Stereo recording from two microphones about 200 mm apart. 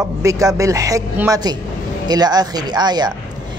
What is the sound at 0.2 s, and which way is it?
A woman's voice, 15° right (ahead or behind).